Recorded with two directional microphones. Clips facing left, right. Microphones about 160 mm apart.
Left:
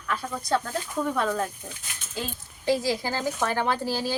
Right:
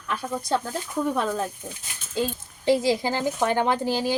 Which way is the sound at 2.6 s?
20° right (ahead or behind).